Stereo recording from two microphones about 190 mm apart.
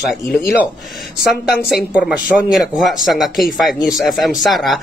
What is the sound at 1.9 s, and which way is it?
A man's voice, 5° right (ahead or behind).